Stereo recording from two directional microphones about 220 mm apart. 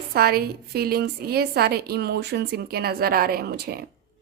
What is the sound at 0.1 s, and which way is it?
Speech, 45° right (ahead or behind).